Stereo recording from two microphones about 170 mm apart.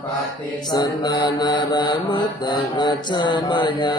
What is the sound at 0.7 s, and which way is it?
Mantra, 25° left (ahead or behind).